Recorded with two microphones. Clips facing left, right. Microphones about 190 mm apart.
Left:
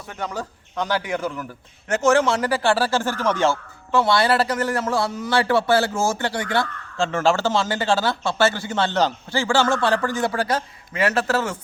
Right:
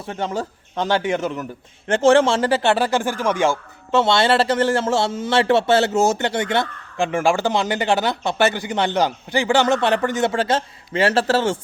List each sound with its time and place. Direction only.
0.0 s a man's voice: 30° right (ahead or behind); by 3.6 s 10° right (ahead or behind)
3.9 s a man's voice: 25° right (ahead or behind)